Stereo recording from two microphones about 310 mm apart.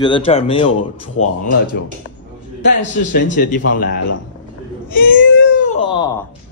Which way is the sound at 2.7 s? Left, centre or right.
Left.